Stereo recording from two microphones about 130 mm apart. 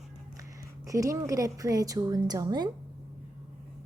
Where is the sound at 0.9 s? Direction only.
25° right (ahead or behind).